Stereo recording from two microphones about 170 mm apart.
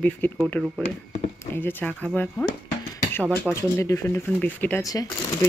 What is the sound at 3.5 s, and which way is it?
Speech, 15° left (ahead or behind).